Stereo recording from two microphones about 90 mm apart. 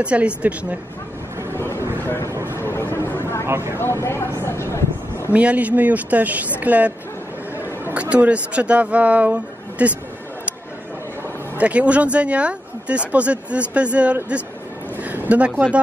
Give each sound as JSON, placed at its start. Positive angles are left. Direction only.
{"t": 0.0, "sound": "speech", "side_deg": -15}
{"t": 1.6, "sound": "a sound", "side_deg": 30}
{"t": 2.0, "sound": "speech", "side_deg": 30}
{"t": 2.3, "sound": "speech", "side_deg": -30}
{"t": 2.6, "sound": "a sound", "side_deg": 25}
{"t": 3.1, "sound": "vehicle", "side_deg": 30}
{"t": 3.4, "sound": "speech", "side_deg": -30}
{"t": 3.7, "sound": "speech", "side_deg": 30}
{"t": 5.3, "sound": "speech", "side_deg": -15}
{"t": 7.9, "sound": "speech", "side_deg": -15}
{"t": 11.5, "sound": "speech", "side_deg": -15}
{"t": 15.0, "sound": "a sound", "side_deg": -15}